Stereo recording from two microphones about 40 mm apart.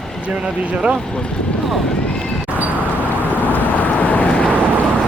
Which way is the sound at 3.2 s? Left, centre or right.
Left.